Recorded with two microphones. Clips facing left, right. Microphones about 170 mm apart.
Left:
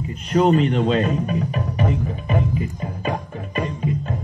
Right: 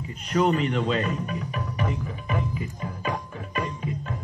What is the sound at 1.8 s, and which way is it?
Music, 25° left (ahead or behind).